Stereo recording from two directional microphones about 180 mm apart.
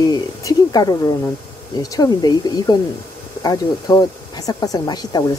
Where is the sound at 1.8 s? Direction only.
20° left (ahead or behind).